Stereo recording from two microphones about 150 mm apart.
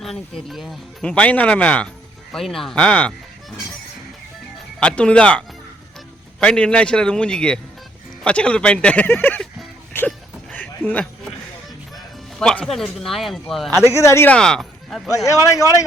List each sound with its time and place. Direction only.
0.0 s speech: centre (ahead or behind)
4.8 s speech: 5° left (ahead or behind)
10.1 s a sound: 10° left (ahead or behind)
12.4 s speech: 5° left (ahead or behind)
13.7 s speech: 20° left (ahead or behind)
14.3 s speech: 5° left (ahead or behind)
15.1 s speech: 20° left (ahead or behind)